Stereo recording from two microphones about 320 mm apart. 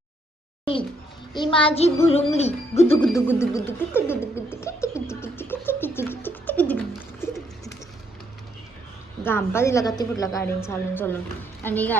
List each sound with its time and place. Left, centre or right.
0.6 s music: centre
3.1 s a sound: centre
9.2 s a woman's voice: centre